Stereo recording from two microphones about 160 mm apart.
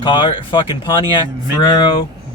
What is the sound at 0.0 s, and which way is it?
Speech, 30° left (ahead or behind).